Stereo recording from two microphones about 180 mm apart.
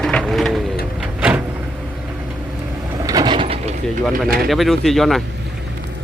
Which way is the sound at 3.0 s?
20° right (ahead or behind).